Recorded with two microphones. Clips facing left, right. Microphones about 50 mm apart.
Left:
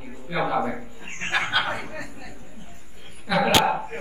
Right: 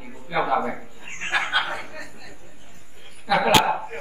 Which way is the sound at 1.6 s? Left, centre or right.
Centre.